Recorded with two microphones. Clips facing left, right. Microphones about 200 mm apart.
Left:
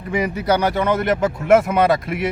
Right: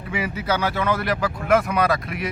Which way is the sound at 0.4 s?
15° left (ahead or behind).